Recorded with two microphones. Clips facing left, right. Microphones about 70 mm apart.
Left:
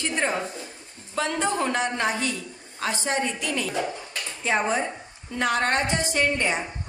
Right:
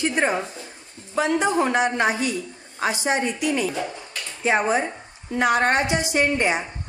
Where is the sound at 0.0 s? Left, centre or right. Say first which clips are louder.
Right 4 dB; centre.